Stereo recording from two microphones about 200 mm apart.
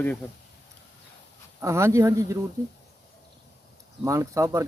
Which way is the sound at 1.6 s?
15° right (ahead or behind).